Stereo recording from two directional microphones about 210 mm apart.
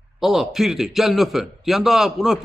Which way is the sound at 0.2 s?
Centre (ahead or behind).